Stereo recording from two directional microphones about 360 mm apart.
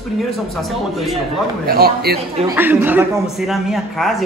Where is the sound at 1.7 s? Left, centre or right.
Right.